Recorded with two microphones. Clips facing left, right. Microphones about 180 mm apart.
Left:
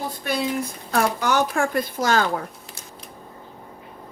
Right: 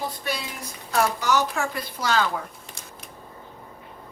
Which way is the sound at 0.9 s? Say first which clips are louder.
Left 1 dB; 55° left (ahead or behind).